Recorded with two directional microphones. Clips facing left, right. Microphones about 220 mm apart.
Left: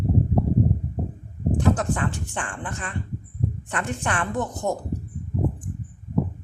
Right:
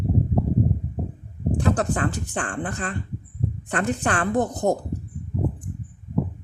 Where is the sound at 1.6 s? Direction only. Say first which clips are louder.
Right 1 dB; 35° right (ahead or behind).